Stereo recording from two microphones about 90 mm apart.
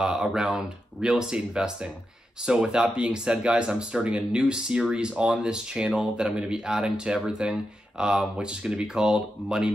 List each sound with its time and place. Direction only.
0.0 s speech: 10° right (ahead or behind)